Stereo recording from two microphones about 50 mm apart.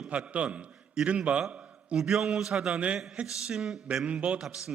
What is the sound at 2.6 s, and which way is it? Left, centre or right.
Speech, right.